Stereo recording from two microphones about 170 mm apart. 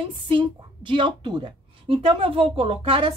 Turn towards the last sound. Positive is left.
turn(degrees=-30)  # may be behind; listen again after turning